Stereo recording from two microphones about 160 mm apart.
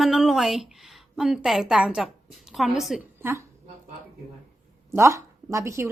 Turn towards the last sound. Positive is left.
turn(degrees=-15)  # may be behind; listen again after turning